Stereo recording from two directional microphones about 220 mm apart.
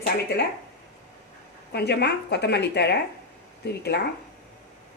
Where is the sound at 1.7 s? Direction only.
50° left (ahead or behind).